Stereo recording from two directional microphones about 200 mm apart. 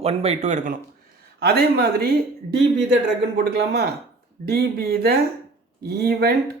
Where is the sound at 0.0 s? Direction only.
30° right (ahead or behind).